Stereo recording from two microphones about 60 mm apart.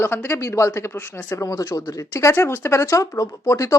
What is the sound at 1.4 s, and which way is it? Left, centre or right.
Speech, left.